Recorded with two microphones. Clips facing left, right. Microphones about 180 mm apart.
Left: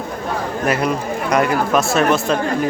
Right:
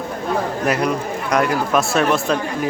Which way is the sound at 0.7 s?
Centre (ahead or behind).